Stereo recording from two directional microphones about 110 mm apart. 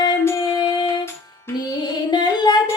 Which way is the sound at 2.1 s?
40° left (ahead or behind).